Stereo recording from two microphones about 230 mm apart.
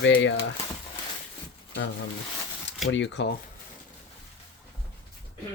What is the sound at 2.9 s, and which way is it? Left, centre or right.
Speech, left.